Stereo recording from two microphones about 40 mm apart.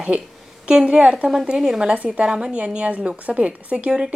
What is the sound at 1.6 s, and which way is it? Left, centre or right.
A woman's voice, centre.